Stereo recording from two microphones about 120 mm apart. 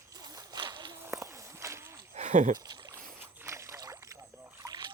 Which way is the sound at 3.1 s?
20° right (ahead or behind).